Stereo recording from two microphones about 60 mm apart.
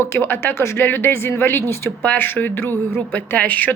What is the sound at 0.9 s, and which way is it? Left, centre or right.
A woman's voice, left.